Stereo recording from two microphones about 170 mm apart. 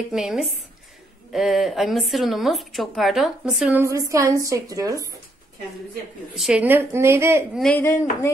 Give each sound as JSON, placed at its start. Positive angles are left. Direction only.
{"t": 0.1, "sound": "a woman's voice", "side_deg": 0}
{"t": 3.8, "sound": "a woman's voice", "side_deg": -15}
{"t": 6.3, "sound": "a woman's voice", "side_deg": -5}
{"t": 7.5, "sound": "a woman's voice", "side_deg": 5}